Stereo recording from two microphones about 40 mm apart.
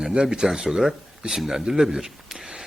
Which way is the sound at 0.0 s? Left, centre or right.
Right.